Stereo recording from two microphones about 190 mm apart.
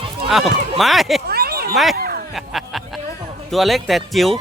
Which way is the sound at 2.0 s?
55° right (ahead or behind).